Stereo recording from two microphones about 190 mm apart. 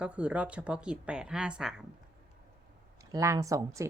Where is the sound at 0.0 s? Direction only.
5° right (ahead or behind).